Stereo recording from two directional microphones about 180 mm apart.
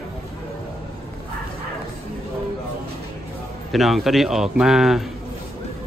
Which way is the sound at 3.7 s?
Centre (ahead or behind).